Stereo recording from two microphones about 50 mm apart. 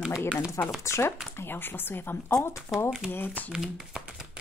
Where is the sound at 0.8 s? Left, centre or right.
Left.